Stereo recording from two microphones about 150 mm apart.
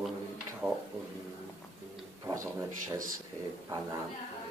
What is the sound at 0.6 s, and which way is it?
Speech, 15° right (ahead or behind).